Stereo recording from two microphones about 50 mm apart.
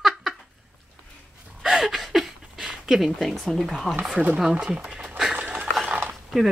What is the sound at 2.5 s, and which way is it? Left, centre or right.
Dog, centre.